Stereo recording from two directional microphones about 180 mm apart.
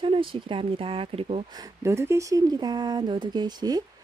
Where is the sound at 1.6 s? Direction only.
15° right (ahead or behind).